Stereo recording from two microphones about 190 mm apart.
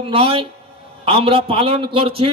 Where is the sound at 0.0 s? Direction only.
30° right (ahead or behind).